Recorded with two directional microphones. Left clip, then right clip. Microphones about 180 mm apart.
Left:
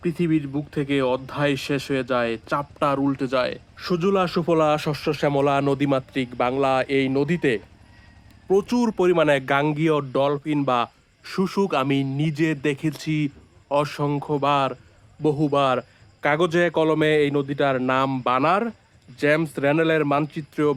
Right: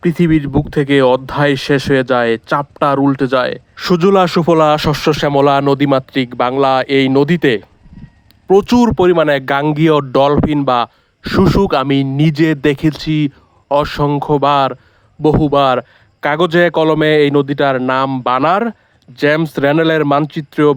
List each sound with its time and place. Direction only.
0.0 s speech: 45° right (ahead or behind)